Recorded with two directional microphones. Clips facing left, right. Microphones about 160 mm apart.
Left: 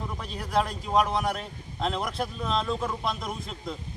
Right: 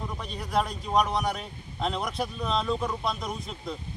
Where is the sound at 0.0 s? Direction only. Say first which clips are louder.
Even; centre (ahead or behind).